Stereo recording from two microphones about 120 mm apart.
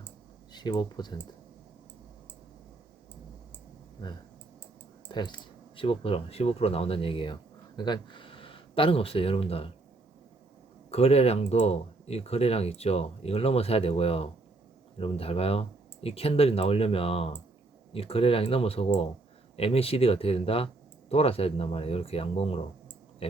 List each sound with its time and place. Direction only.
0.5 s speech: 35° left (ahead or behind)
5.0 s speech: 40° left (ahead or behind)
10.9 s speech: 60° left (ahead or behind)